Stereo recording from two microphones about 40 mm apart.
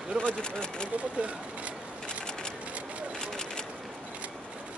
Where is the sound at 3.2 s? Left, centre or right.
Centre.